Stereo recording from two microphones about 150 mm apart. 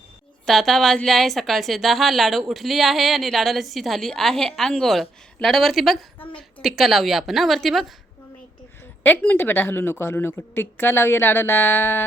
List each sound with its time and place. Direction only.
0.4 s a woman's voice: centre (ahead or behind)
9.0 s a woman's voice: 10° left (ahead or behind)